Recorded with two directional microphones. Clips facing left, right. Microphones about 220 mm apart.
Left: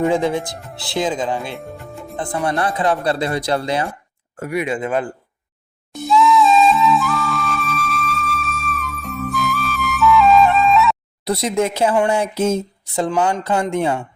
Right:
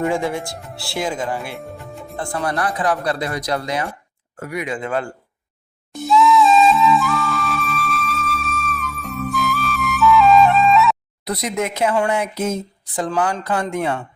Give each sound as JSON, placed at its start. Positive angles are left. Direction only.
{"t": 0.0, "sound": "speech", "side_deg": 20}
{"t": 5.9, "sound": "flute", "side_deg": 0}
{"t": 11.3, "sound": "speech", "side_deg": 30}